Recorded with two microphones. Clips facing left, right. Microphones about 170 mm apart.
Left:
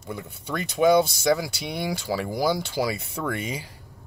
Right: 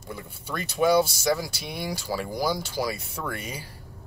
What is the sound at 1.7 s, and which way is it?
Speech, 20° left (ahead or behind).